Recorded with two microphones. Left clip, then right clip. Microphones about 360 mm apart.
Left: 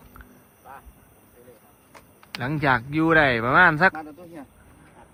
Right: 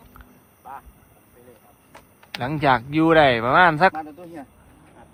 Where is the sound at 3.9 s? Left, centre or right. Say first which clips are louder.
Right 4 dB; right.